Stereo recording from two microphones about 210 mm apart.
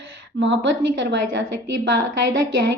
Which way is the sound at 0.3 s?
60° right (ahead or behind).